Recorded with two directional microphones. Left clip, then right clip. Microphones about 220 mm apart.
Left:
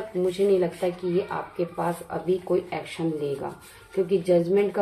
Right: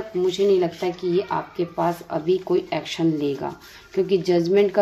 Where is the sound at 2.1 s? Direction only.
50° right (ahead or behind).